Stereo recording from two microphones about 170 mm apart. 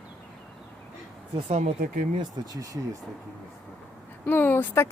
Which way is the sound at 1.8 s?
55° right (ahead or behind).